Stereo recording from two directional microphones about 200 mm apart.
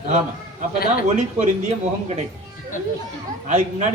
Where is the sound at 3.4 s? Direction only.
40° right (ahead or behind).